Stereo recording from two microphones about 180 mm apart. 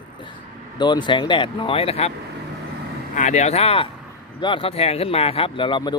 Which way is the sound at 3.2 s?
40° left (ahead or behind).